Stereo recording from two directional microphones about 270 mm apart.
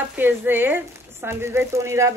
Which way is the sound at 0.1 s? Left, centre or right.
Centre.